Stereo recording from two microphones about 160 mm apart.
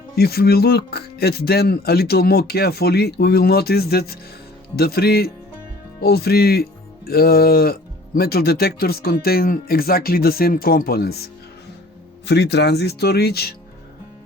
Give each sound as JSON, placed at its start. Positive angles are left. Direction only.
{"t": 0.2, "sound": "speech", "side_deg": 80}
{"t": 12.2, "sound": "speech", "side_deg": 90}